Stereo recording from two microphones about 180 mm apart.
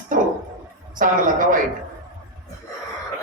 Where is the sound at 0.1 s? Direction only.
50° right (ahead or behind).